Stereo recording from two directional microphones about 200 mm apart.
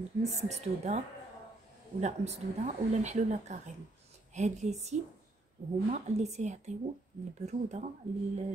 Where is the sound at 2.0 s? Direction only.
35° right (ahead or behind).